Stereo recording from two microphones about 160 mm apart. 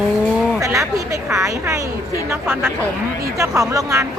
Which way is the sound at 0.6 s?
20° right (ahead or behind).